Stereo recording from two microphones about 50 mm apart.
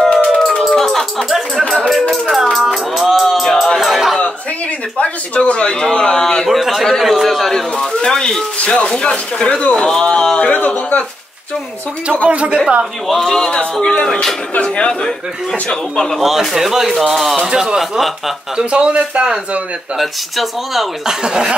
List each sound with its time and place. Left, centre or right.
0.1 s a sound: centre
0.7 s a sound: centre
2.5 s music: centre
4.9 s a sound: left
8.5 s speech: left
9.8 s speech: centre
10.4 s speech: left
12.3 s speech: right
13.1 s speech: centre
16.2 s speech: centre
18.6 s speech: right
20.0 s speech: centre